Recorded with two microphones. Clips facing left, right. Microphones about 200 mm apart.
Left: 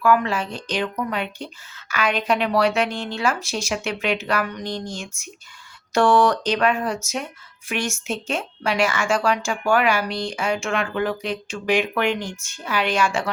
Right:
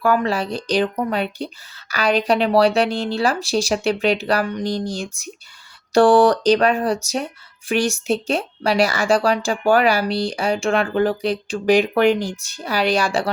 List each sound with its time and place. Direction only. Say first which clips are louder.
0.0 s a woman's voice: right 1 dB; 35° right (ahead or behind)